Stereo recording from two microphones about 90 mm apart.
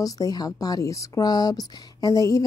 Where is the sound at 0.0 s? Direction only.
45° left (ahead or behind).